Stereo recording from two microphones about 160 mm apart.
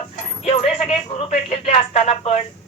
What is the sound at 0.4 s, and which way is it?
Speech, 40° left (ahead or behind).